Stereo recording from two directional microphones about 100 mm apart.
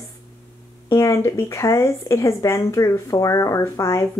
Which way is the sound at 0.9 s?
30° left (ahead or behind).